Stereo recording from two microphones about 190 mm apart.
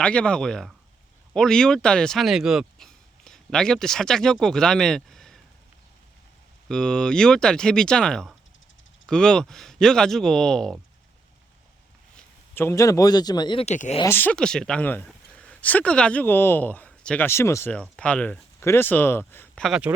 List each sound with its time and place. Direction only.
0.0 s speech: 5° left (ahead or behind)
6.7 s speech: 5° left (ahead or behind)
12.1 s a man's voice: 10° left (ahead or behind); by 14.0 s 35° left (ahead or behind)
14.0 s speech: 10° left (ahead or behind)
19.6 s speech: 5° right (ahead or behind)